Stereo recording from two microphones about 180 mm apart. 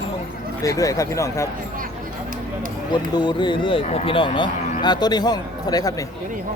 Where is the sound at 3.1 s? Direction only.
25° left (ahead or behind).